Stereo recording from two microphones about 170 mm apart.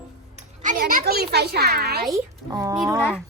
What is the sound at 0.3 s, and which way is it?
A woman's voice, 50° right (ahead or behind).